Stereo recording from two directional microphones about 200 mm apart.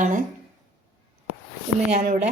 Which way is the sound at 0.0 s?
40° right (ahead or behind).